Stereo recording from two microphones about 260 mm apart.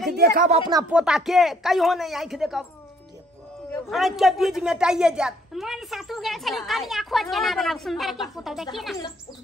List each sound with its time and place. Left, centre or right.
0.1 s speech: right
0.7 s speech: centre
0.9 s a woman's voice: centre
3.7 s a woman's voice: centre